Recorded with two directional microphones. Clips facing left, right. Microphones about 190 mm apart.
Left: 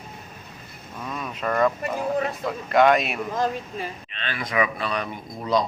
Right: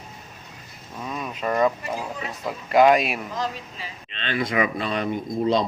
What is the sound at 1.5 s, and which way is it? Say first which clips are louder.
Speech: right 1 dB; 15° right (ahead or behind).